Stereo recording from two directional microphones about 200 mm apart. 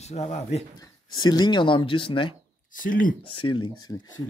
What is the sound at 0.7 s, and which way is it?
Speech, 20° left (ahead or behind).